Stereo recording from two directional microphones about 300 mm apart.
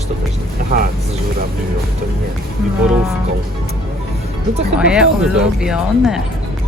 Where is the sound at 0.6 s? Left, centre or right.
Right.